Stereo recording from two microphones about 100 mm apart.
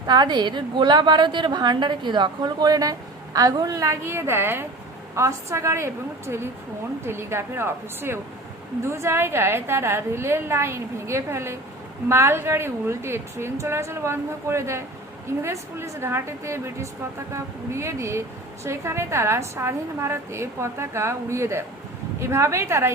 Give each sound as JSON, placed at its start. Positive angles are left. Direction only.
{"t": 0.1, "sound": "a woman's voice", "side_deg": -45}